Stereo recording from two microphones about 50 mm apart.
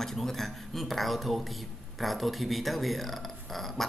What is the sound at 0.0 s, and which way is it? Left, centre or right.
Speech, centre.